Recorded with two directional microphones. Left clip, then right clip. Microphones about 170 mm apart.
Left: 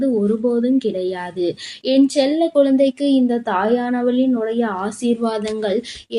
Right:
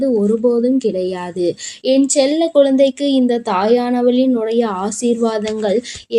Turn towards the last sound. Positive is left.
turn(degrees=-25)  # may be behind; listen again after turning